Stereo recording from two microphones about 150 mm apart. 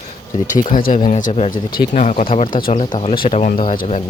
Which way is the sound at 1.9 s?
55° left (ahead or behind).